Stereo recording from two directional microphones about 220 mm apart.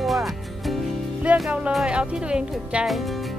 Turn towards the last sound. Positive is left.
turn(degrees=0)  # may be behind; listen again after turning